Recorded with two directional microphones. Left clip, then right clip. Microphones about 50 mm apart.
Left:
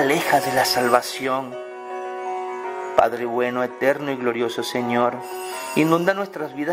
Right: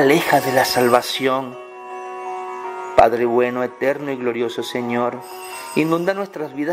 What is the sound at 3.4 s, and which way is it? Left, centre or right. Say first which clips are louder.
A man's voice: right 3 dB; centre.